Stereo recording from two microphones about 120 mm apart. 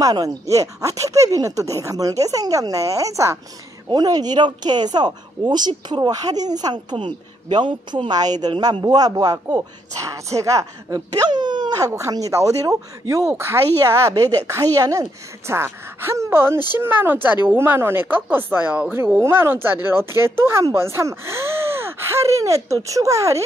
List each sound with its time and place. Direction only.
0.0 s speech: 30° right (ahead or behind)
11.9 s a woman's voice: 25° right (ahead or behind)